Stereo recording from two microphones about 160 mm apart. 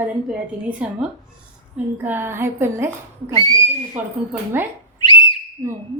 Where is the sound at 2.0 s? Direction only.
15° right (ahead or behind).